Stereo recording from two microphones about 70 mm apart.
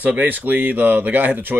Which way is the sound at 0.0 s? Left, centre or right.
Right.